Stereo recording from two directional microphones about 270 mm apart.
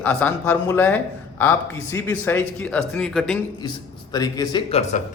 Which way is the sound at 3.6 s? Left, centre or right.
Centre.